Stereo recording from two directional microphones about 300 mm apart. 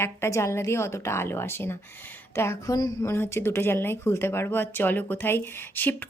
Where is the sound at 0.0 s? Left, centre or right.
Centre.